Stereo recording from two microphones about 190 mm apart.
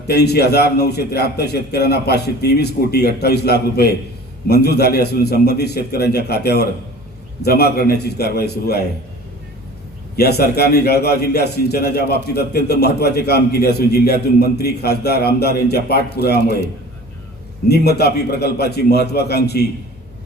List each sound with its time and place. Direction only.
0.1 s a man's voice: 60° left (ahead or behind)
10.2 s a man's voice: 55° left (ahead or behind)
17.7 s a man's voice: 60° left (ahead or behind)